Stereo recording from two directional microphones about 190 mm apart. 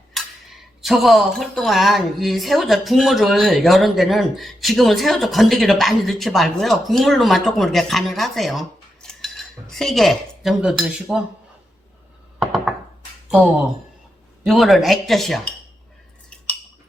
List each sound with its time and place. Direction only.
0.1 s speech: centre (ahead or behind)
12.4 s thunk: centre (ahead or behind)
14.4 s speech: centre (ahead or behind)